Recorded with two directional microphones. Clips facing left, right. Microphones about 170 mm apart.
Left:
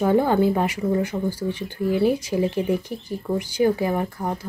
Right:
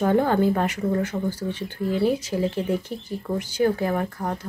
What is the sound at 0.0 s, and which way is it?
Speech, 10° left (ahead or behind).